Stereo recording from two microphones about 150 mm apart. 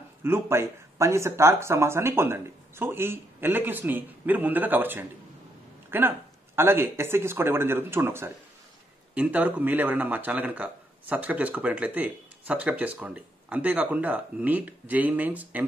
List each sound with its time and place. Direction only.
0.2 s speech: 15° right (ahead or behind)